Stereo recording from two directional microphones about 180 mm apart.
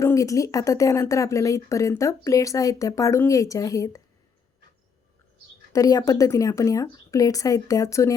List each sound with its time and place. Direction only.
0.0 s speech: 15° left (ahead or behind)
5.7 s a woman's voice: 20° left (ahead or behind)